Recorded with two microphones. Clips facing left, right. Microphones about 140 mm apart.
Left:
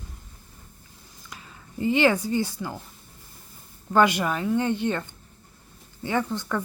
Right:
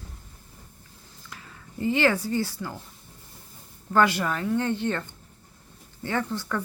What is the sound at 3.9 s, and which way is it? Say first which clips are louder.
Speech: left 2 dB; 15° left (ahead or behind).